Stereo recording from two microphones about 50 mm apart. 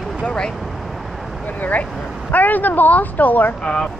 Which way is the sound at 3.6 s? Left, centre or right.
Centre.